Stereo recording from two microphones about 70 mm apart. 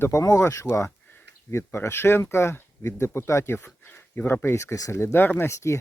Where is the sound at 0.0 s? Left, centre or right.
Left.